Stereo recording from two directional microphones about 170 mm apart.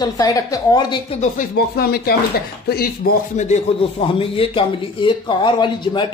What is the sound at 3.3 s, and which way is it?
Speech, 45° left (ahead or behind).